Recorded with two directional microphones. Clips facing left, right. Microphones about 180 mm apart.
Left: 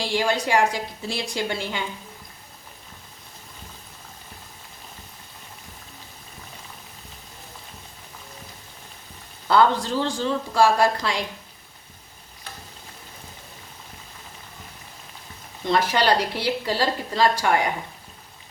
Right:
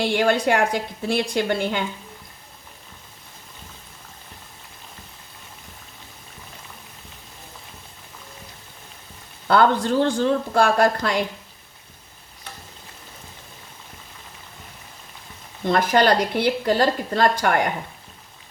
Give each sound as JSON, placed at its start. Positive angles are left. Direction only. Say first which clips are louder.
{"t": 0.0, "sound": "a woman's voice", "louder": "right 4 dB", "side_deg": -60}
{"t": 9.5, "sound": "a woman's voice", "louder": "right 2 dB", "side_deg": -55}
{"t": 15.6, "sound": "a woman's voice", "louder": "right 3 dB", "side_deg": -50}